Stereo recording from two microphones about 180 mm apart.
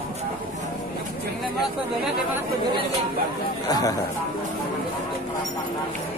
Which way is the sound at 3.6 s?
20° left (ahead or behind).